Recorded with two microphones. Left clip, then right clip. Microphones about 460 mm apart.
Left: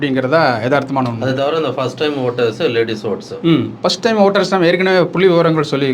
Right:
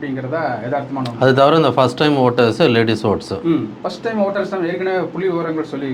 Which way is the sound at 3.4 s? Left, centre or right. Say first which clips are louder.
Left 6 dB; left.